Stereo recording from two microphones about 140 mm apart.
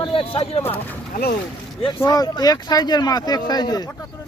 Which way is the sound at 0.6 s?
15° left (ahead or behind).